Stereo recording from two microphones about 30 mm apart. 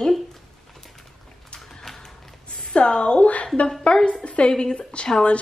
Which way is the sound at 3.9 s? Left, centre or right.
Centre.